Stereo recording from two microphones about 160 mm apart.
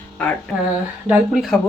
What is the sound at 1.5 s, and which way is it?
Speech, centre (ahead or behind).